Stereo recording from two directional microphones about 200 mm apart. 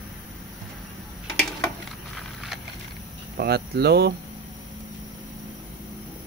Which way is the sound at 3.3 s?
55° right (ahead or behind).